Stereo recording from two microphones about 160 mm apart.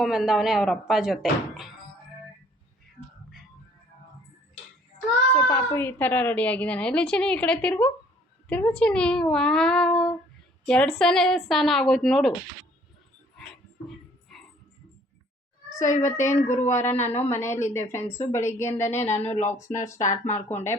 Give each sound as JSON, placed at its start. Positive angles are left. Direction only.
{"t": 0.0, "sound": "speech", "side_deg": -5}
{"t": 5.3, "sound": "a woman's voice", "side_deg": 15}
{"t": 13.8, "sound": "music", "side_deg": 0}
{"t": 16.0, "sound": "a woman's voice", "side_deg": 15}
{"t": 19.0, "sound": "speech", "side_deg": 45}
{"t": 19.5, "sound": "speech", "side_deg": 20}
{"t": 20.0, "sound": "speech", "side_deg": 50}